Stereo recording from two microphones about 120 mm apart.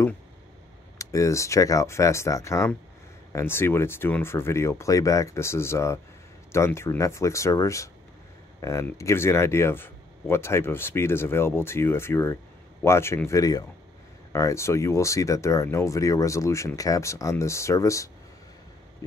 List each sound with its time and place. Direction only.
0.9 s speech: 25° left (ahead or behind)